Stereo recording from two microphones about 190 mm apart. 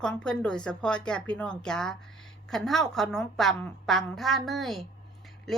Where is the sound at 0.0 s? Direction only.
5° left (ahead or behind).